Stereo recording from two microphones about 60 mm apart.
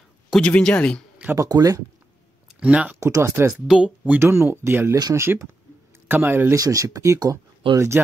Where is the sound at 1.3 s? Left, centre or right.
Right.